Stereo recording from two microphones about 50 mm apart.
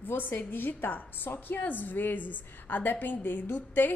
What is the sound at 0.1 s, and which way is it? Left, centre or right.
A woman's voice, left.